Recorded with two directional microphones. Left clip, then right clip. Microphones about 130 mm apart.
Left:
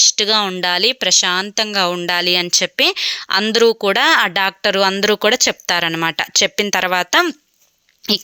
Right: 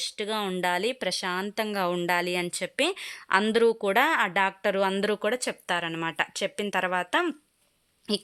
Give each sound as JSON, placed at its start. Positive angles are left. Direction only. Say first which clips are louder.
{"t": 0.2, "sound": "speech", "louder": "left 13 dB", "side_deg": 25}
{"t": 5.2, "sound": "speech", "louder": "left 13 dB", "side_deg": 30}
{"t": 5.9, "sound": "a woman's voice", "louder": "left 11 dB", "side_deg": 25}